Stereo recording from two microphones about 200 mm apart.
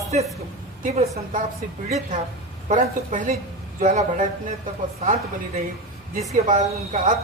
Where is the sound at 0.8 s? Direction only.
35° right (ahead or behind).